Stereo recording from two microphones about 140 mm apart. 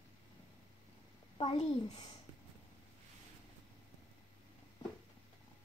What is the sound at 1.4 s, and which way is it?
Speech, 40° left (ahead or behind).